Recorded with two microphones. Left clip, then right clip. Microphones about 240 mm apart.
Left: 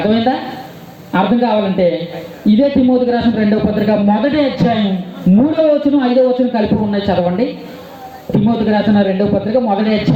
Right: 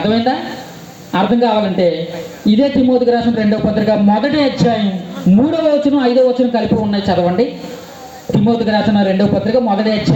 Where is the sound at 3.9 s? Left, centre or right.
Right.